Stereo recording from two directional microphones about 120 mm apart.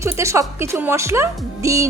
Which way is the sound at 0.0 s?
25° right (ahead or behind).